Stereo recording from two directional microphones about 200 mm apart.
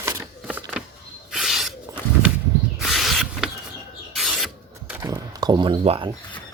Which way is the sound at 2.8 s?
Centre (ahead or behind).